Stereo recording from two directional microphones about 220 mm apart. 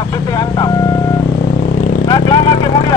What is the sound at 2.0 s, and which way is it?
Vehicle, 20° left (ahead or behind).